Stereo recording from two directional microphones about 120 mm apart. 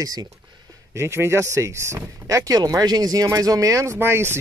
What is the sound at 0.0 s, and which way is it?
Speech, 30° right (ahead or behind).